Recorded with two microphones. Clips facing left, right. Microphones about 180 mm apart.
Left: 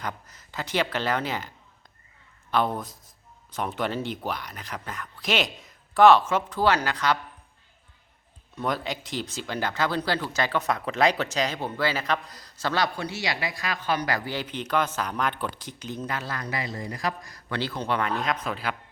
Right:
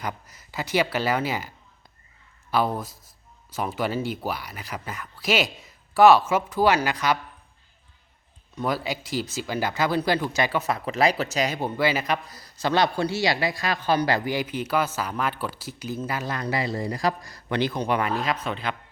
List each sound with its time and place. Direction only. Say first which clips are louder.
0.0 s speech: right 2 dB; 10° right (ahead or behind)
8.5 s speech: right 2 dB; 5° right (ahead or behind)
12.7 s a man's voice: right 6 dB; 25° right (ahead or behind)
14.3 s speech: right 4 dB; 10° right (ahead or behind)
16.2 s a man's voice: right 5 dB; 25° right (ahead or behind)
17.5 s speech: right 4 dB; 15° right (ahead or behind); by 18.8 s 5° left (ahead or behind)